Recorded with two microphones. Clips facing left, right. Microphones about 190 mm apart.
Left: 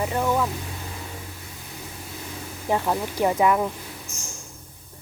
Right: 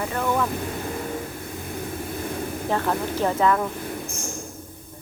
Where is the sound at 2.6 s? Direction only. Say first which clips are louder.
Left 1 dB; 15° left (ahead or behind).